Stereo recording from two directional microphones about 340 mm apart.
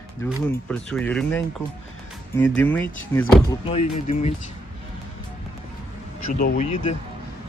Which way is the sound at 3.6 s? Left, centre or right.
Centre.